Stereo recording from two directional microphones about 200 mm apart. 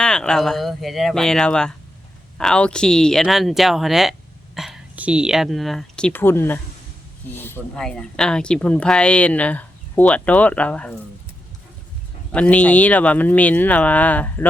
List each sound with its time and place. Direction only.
0.0 s speech: 5° left (ahead or behind)
12.3 s speech: 5° left (ahead or behind)